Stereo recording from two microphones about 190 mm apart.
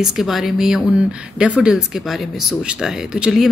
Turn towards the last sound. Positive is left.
turn(degrees=-5)  # may be behind; listen again after turning